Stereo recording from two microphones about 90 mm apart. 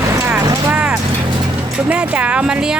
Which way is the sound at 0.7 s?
15° right (ahead or behind).